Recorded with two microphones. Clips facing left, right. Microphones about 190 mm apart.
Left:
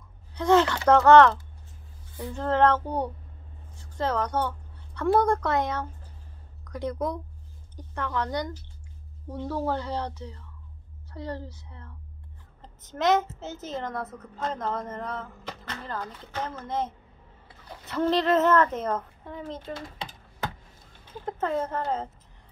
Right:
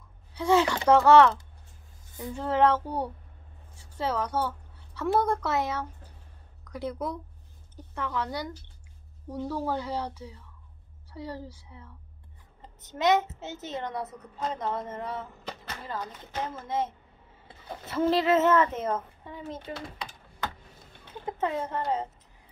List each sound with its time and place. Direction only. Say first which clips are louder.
0.3 s speech: left 2 dB; 10° right (ahead or behind)
2.3 s a woman's voice: left 1 dB; 10° right (ahead or behind)
17.9 s a woman's voice: even; 5° right (ahead or behind)
21.3 s a woman's voice: left 2 dB; centre (ahead or behind)